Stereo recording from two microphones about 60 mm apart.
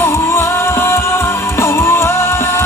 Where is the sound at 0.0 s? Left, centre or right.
Left.